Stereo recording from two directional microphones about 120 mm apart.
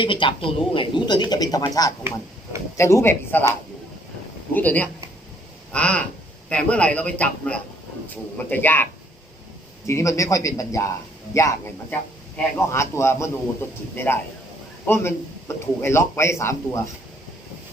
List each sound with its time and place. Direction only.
0.0 s a man's voice: 45° left (ahead or behind); by 3.5 s 20° left (ahead or behind)
4.5 s a man's voice: 15° left (ahead or behind)
12.5 s a man's voice: 20° left (ahead or behind)